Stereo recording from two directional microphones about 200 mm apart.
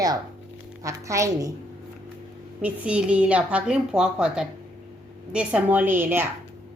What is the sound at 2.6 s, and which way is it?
A woman's voice, 5° right (ahead or behind).